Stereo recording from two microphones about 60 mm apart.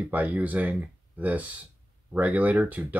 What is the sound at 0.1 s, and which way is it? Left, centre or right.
Speech, right.